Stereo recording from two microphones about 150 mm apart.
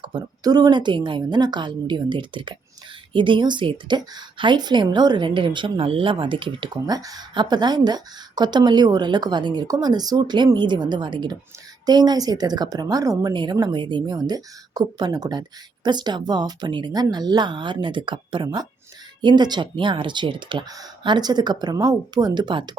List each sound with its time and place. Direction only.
0.0 s a woman's voice: 30° right (ahead or behind)